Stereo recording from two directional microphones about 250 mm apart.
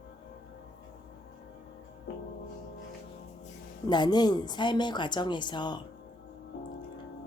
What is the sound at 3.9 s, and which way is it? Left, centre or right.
Speech, centre.